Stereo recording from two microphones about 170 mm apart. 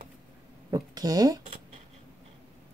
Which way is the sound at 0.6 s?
20° right (ahead or behind).